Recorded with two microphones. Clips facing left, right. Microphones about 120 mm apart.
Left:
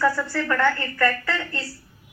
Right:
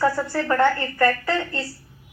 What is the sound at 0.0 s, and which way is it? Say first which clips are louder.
A woman's voice: right 1 dB; 25° right (ahead or behind).